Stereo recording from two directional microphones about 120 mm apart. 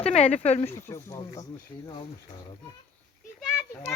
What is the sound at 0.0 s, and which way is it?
Speech, 70° left (ahead or behind).